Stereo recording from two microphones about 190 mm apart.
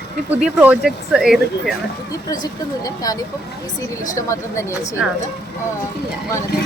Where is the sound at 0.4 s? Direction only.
5° right (ahead or behind).